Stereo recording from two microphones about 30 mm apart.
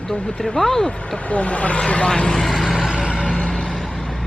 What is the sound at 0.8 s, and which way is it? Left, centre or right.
Speech, left.